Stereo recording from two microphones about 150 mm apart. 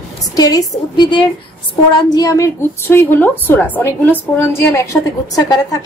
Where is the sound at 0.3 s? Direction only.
25° left (ahead or behind).